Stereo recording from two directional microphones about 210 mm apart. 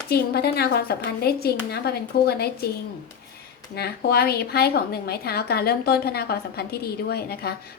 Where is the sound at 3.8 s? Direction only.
50° left (ahead or behind).